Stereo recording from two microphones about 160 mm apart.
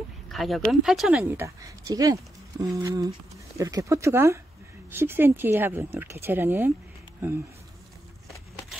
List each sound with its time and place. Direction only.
0.3 s speech: centre (ahead or behind)
1.2 s speech: 15° right (ahead or behind)